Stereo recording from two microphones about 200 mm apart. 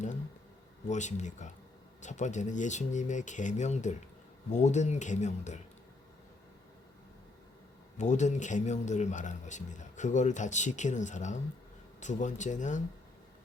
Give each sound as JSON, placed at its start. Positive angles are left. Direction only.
{"t": 0.9, "sound": "speech", "side_deg": 35}
{"t": 7.9, "sound": "speech", "side_deg": 35}